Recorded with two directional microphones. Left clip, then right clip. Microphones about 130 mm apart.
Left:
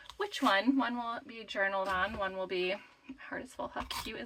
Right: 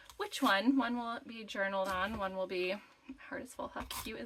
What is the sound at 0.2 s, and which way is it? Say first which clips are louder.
Speech: left 2 dB; 50° right (ahead or behind).